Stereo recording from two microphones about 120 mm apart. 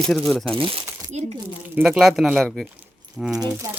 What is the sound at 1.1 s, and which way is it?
Speech, 65° right (ahead or behind).